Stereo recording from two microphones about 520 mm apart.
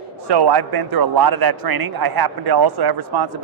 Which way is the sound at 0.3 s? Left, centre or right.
Right.